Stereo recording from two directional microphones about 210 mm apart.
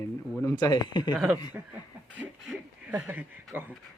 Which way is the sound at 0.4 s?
20° left (ahead or behind).